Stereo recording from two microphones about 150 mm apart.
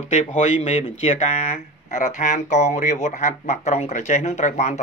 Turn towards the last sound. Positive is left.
turn(degrees=50)  # may be behind; listen again after turning